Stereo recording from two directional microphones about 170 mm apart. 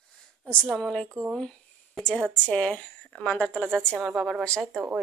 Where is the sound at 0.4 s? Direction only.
5° left (ahead or behind).